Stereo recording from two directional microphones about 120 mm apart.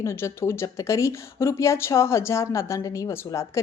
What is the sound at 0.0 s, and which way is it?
A woman's voice, 25° left (ahead or behind).